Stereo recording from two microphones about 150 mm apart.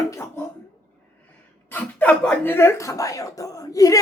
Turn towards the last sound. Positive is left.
turn(degrees=25)  # may be behind; listen again after turning